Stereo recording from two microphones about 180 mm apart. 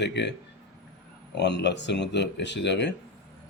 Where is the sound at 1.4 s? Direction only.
70° left (ahead or behind).